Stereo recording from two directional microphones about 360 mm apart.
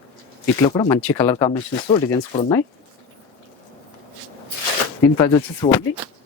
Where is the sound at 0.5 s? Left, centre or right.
Centre.